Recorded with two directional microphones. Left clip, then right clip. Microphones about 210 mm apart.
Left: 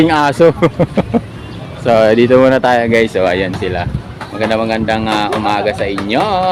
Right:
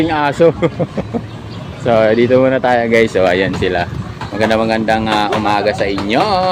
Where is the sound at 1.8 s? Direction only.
10° left (ahead or behind).